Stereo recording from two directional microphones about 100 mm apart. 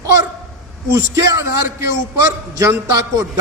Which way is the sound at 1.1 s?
30° right (ahead or behind).